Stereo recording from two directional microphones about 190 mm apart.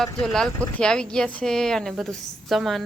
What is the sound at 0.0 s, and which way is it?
Speech, centre (ahead or behind).